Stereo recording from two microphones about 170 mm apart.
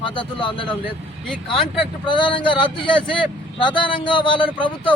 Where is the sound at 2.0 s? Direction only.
30° left (ahead or behind).